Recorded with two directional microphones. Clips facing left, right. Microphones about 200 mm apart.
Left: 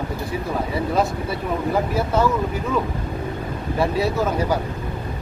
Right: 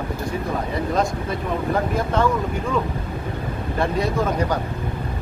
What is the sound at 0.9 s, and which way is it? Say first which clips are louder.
Speech: even; 5° left (ahead or behind).